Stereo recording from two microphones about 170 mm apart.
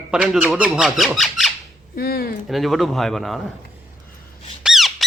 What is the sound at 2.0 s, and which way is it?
Speech, 65° left (ahead or behind).